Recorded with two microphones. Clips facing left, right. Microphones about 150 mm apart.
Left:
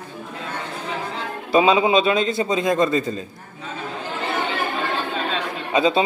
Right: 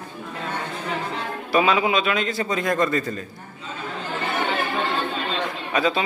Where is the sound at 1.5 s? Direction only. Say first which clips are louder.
Left 4 dB; 25° left (ahead or behind).